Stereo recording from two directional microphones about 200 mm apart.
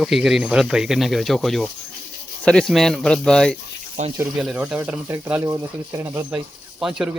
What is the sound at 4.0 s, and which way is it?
Speech, 35° right (ahead or behind).